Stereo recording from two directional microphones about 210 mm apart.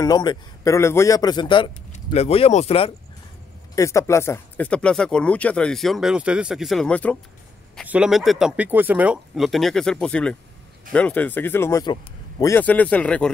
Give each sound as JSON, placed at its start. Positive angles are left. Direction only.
{"t": 0.0, "sound": "speech", "side_deg": 20}
{"t": 3.7, "sound": "speech", "side_deg": 15}
{"t": 7.7, "sound": "speech", "side_deg": -5}